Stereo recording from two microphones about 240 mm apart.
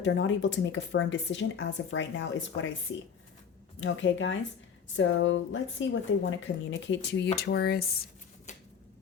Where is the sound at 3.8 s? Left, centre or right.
Left.